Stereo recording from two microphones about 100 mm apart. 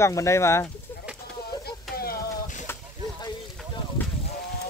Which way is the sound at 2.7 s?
25° left (ahead or behind).